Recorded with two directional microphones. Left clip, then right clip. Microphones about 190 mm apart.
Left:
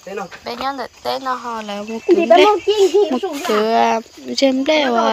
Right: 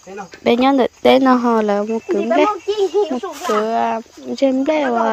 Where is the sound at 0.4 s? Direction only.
50° right (ahead or behind).